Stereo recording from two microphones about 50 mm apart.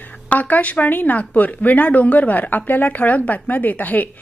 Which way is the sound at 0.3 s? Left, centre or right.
Left.